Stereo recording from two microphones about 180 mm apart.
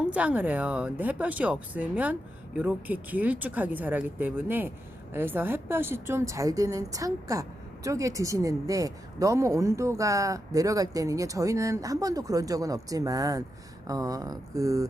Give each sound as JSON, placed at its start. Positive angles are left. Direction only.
{"t": 0.0, "sound": "a woman's voice", "side_deg": -5}